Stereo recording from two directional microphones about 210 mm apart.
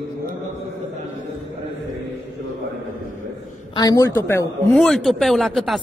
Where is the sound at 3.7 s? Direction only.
20° left (ahead or behind).